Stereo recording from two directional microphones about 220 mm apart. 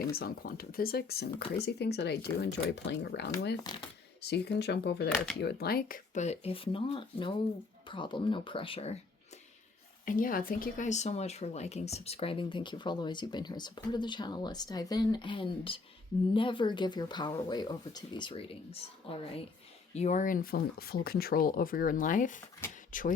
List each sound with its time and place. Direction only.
0.1 s speech: 45° left (ahead or behind)
3.6 s speech: 20° left (ahead or behind)
4.2 s speech: 50° left (ahead or behind); by 9.0 s 25° left (ahead or behind)
10.1 s speech: 40° left (ahead or behind)